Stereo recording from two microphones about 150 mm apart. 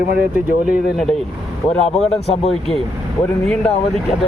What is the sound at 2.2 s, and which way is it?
Speech, 45° left (ahead or behind).